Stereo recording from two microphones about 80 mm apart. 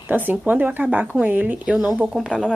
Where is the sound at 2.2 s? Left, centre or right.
Centre.